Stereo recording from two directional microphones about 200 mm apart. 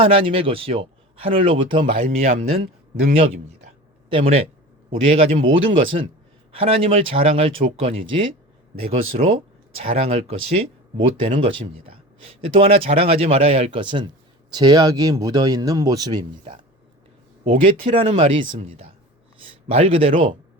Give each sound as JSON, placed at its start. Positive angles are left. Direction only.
{"t": 0.0, "sound": "speech", "side_deg": -25}
{"t": 2.0, "sound": "speech", "side_deg": -35}
{"t": 2.9, "sound": "speech", "side_deg": -50}
{"t": 4.1, "sound": "speech", "side_deg": -30}